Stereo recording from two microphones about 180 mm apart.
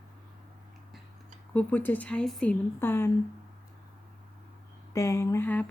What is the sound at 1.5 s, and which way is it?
Speech, 10° left (ahead or behind).